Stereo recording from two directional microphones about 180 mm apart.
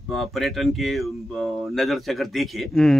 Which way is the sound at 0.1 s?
Centre (ahead or behind).